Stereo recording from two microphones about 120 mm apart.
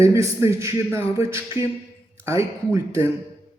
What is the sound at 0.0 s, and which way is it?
A man's voice, 25° right (ahead or behind).